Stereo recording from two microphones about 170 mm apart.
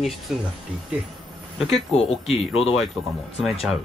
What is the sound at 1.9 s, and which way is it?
Speech, 35° left (ahead or behind).